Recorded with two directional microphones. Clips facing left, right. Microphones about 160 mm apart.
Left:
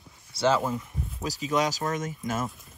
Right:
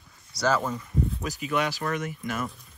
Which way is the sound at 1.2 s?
35° left (ahead or behind).